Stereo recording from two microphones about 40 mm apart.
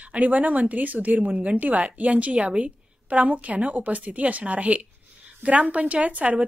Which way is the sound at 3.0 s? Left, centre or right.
Right.